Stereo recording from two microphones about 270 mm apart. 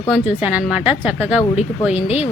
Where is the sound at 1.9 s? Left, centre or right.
Left.